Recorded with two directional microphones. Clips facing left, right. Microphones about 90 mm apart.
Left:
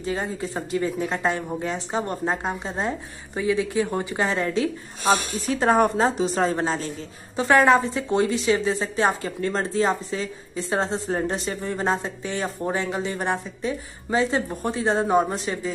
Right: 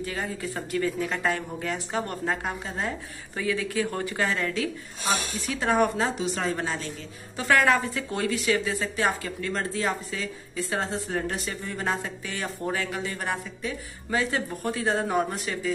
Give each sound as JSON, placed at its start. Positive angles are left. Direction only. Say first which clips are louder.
{"t": 0.0, "sound": "a woman's voice", "louder": "left 4 dB", "side_deg": 25}